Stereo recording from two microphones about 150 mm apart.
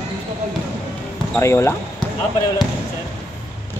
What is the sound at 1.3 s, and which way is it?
Speech, 15° left (ahead or behind).